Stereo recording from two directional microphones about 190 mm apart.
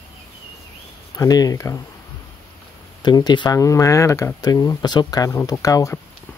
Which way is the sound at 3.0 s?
20° left (ahead or behind).